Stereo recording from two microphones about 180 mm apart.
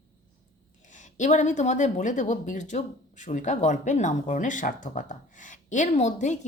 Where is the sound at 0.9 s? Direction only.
45° left (ahead or behind).